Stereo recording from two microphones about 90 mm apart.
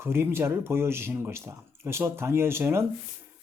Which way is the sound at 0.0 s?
25° right (ahead or behind).